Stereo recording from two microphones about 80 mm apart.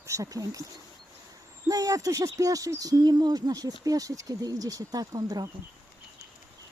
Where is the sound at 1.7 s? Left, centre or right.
Right.